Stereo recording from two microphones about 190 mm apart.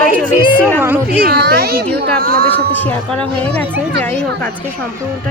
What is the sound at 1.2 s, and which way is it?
Speech, 55° right (ahead or behind).